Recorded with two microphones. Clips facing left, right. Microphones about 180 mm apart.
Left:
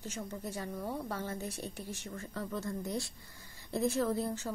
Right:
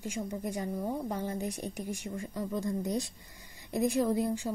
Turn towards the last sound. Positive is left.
turn(degrees=-15)  # may be behind; listen again after turning